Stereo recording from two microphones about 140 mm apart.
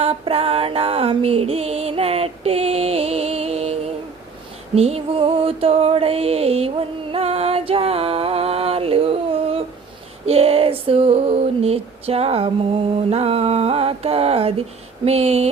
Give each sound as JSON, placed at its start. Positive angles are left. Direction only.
{"t": 0.0, "sound": "music", "side_deg": -45}
{"t": 4.7, "sound": "a sound", "side_deg": -45}
{"t": 10.2, "sound": "female singing", "side_deg": -45}